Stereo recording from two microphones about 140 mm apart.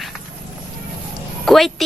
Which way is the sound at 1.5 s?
Centre (ahead or behind).